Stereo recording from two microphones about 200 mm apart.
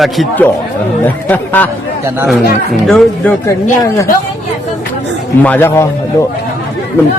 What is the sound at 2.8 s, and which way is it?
Speech, centre (ahead or behind).